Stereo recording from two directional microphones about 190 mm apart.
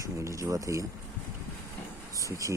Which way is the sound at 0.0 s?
15° right (ahead or behind).